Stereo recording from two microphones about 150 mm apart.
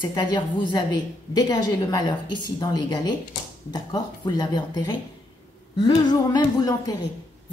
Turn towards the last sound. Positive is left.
turn(degrees=25)  # may be behind; listen again after turning